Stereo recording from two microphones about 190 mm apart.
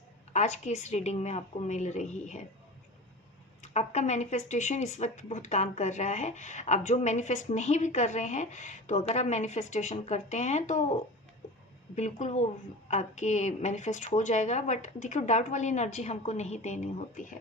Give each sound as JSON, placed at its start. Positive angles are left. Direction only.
{"t": 0.3, "sound": "speech", "side_deg": 40}
{"t": 3.6, "sound": "speech", "side_deg": 35}